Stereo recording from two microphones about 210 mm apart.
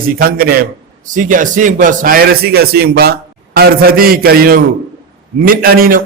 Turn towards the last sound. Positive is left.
turn(degrees=-45)  # may be behind; listen again after turning